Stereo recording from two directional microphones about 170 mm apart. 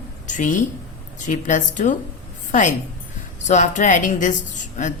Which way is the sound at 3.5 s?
45° left (ahead or behind).